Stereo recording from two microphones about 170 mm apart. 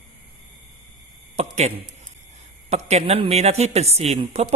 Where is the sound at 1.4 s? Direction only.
40° right (ahead or behind).